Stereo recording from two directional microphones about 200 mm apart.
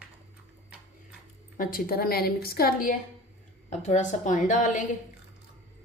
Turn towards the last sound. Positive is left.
turn(degrees=40)  # may be behind; listen again after turning